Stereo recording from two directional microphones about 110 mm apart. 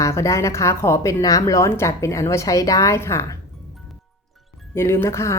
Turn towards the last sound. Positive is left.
turn(degrees=25)  # may be behind; listen again after turning